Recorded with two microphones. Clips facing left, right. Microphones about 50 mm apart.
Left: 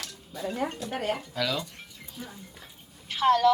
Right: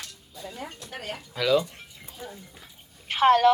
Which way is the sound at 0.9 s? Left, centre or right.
Left.